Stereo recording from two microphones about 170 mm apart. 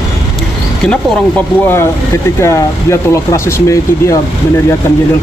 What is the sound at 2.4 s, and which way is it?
Speech, 15° left (ahead or behind).